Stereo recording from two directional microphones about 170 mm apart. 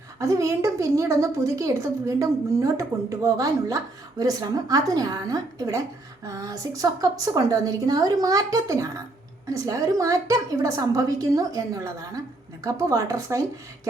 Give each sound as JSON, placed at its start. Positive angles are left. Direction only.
{"t": 0.2, "sound": "a woman's voice", "side_deg": -20}